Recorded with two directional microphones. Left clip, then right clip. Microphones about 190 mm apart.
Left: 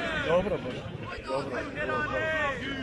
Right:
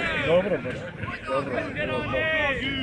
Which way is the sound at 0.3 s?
10° right (ahead or behind).